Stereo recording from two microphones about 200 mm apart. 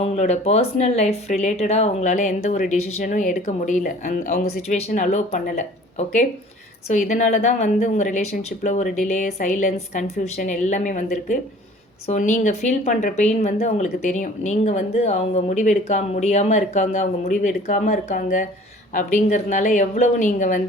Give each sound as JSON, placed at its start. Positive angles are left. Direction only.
{"t": 0.0, "sound": "speech", "side_deg": 35}